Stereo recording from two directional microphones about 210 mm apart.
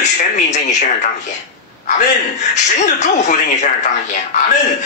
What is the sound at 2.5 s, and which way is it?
Speech, 35° left (ahead or behind).